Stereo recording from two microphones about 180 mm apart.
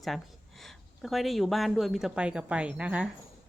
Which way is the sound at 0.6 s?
Centre (ahead or behind).